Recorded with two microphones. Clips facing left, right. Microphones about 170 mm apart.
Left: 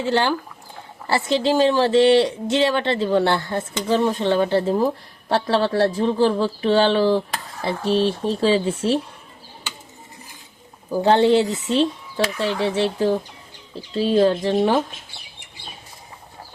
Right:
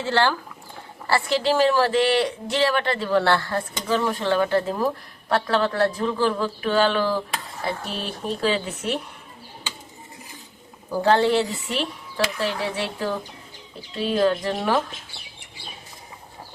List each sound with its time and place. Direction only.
0.0 s speech: 15° left (ahead or behind)
11.0 s speech: 20° left (ahead or behind)